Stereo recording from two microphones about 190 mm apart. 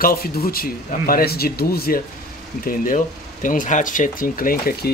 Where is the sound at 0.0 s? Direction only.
50° left (ahead or behind).